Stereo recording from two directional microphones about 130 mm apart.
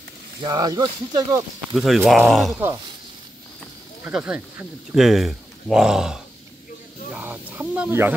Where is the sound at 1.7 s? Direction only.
Centre (ahead or behind).